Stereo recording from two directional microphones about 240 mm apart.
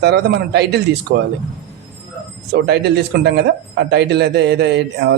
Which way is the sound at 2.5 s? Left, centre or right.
Right.